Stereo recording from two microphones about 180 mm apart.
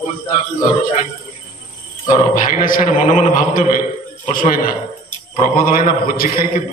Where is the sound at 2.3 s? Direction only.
50° left (ahead or behind).